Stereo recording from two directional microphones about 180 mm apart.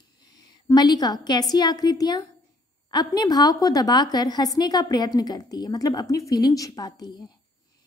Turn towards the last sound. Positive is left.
turn(degrees=20)  # may be behind; listen again after turning